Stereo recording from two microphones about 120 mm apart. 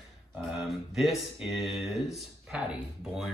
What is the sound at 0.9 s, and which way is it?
Speech, 5° right (ahead or behind).